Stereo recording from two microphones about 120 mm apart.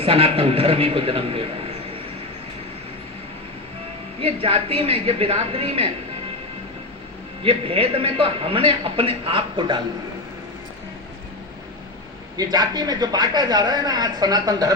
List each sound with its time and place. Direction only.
0.0 s a man's voice: 50° right (ahead or behind)
4.2 s a man's voice: 50° right (ahead or behind)
7.4 s a man's voice: 50° right (ahead or behind)
12.4 s speech: 35° right (ahead or behind)